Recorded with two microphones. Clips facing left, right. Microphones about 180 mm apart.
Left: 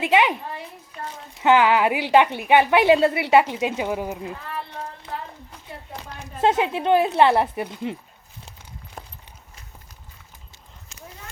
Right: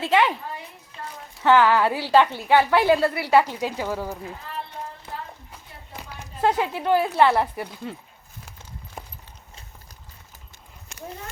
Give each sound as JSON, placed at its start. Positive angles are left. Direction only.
{"t": 0.0, "sound": "a child's voice", "side_deg": 15}
{"t": 1.4, "sound": "a woman's voice", "side_deg": 15}
{"t": 6.4, "sound": "a woman's voice", "side_deg": 20}
{"t": 10.9, "sound": "a sound", "side_deg": -65}